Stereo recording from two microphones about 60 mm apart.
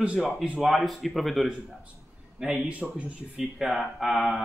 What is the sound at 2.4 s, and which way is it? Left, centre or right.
A man's voice, centre.